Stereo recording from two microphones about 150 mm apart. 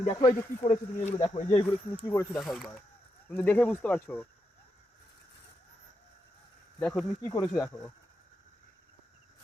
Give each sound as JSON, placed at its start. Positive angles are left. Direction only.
{"t": 0.1, "sound": "speech", "side_deg": 25}
{"t": 0.6, "sound": "speech", "side_deg": 45}
{"t": 2.3, "sound": "speech", "side_deg": 0}
{"t": 6.7, "sound": "speech", "side_deg": 10}
{"t": 7.3, "sound": "speech", "side_deg": 20}